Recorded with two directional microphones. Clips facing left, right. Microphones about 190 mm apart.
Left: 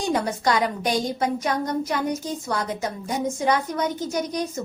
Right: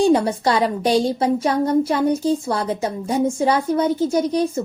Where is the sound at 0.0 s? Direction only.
30° right (ahead or behind).